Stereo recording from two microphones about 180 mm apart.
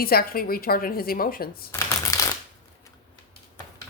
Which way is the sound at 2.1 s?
15° left (ahead or behind).